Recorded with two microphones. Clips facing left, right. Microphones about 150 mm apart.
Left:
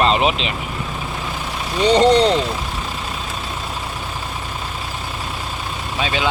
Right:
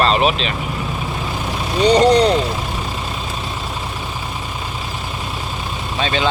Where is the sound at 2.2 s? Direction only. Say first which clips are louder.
Right 1 dB; 10° right (ahead or behind).